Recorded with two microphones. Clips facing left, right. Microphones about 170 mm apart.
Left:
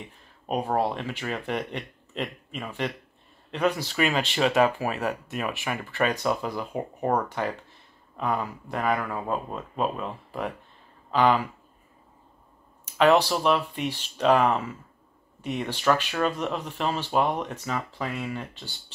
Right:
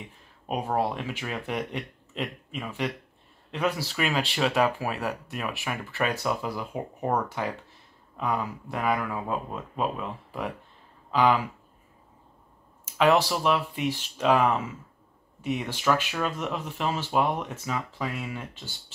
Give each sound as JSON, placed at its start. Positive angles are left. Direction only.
{"t": 0.5, "sound": "speech", "side_deg": -5}
{"t": 12.8, "sound": "a sound", "side_deg": -5}
{"t": 13.3, "sound": "speech", "side_deg": -5}